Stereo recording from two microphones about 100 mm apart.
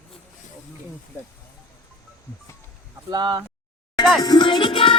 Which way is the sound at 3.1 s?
45° right (ahead or behind).